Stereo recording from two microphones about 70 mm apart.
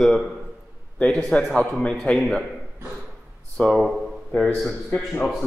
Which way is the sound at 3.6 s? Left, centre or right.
Left.